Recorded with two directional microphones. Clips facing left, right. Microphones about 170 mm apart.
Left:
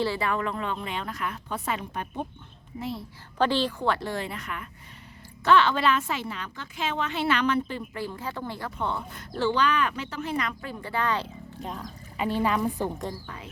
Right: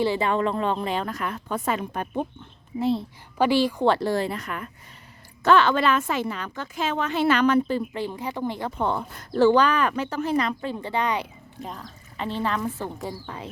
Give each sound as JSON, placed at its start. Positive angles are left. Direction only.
{"t": 0.0, "sound": "speech", "side_deg": -20}
{"t": 3.3, "sound": "speech", "side_deg": -10}
{"t": 3.8, "sound": "a woman's voice", "side_deg": -35}
{"t": 7.9, "sound": "speech", "side_deg": -20}
{"t": 8.8, "sound": "speech", "side_deg": -45}
{"t": 11.6, "sound": "a woman's voice", "side_deg": 0}
{"t": 13.2, "sound": "speech", "side_deg": -30}